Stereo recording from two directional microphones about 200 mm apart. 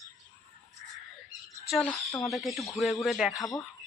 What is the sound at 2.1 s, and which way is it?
Speech, 15° left (ahead or behind).